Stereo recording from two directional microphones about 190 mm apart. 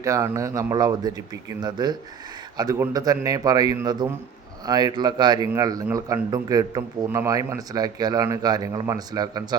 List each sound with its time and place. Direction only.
0.0 s speech: 15° right (ahead or behind)